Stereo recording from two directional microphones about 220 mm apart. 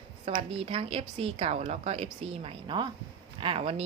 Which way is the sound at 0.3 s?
25° right (ahead or behind).